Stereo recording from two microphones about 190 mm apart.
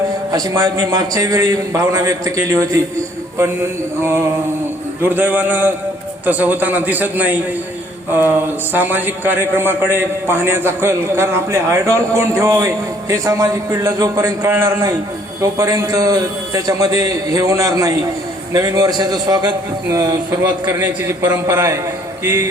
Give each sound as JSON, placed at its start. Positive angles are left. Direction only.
{"t": 0.3, "sound": "a man's voice", "side_deg": -20}